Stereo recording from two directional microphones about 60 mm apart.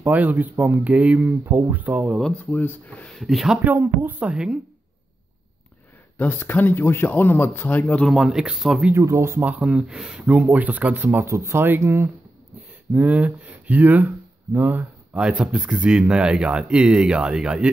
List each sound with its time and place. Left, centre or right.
0.0 s speech: right
2.3 s speech: left
3.1 s speech: centre
3.6 s speech: right
6.1 s speech: left
8.1 s speech: centre
8.9 s speech: right
9.4 s speech: right
10.2 s speech: right
11.2 s speech: right
12.9 s speech: right
15.1 s speech: centre